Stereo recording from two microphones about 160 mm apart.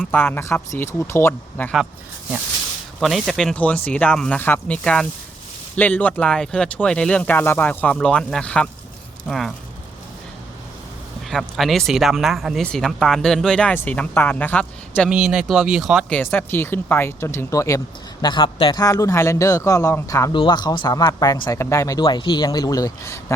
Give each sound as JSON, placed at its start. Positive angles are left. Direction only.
{"t": 0.1, "sound": "speech", "side_deg": 10}
{"t": 3.0, "sound": "speech", "side_deg": 0}
{"t": 11.3, "sound": "speech", "side_deg": 0}
{"t": 15.1, "sound": "speech", "side_deg": -5}
{"t": 16.0, "sound": "speech", "side_deg": 10}
{"t": 20.3, "sound": "speech", "side_deg": 30}